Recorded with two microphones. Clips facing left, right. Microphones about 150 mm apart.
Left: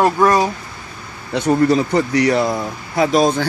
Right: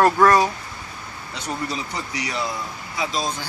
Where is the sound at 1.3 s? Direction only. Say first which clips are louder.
Left 15 dB; 60° left (ahead or behind).